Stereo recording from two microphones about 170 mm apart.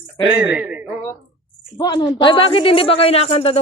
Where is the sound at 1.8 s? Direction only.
25° left (ahead or behind).